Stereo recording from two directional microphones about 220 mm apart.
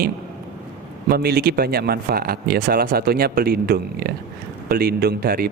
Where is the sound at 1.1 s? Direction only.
45° right (ahead or behind).